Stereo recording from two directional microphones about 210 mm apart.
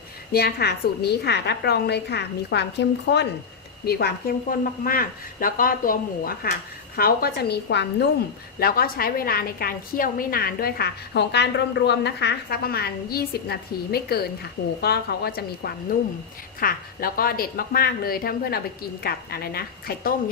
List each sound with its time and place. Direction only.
0.3 s a woman's voice: 50° left (ahead or behind)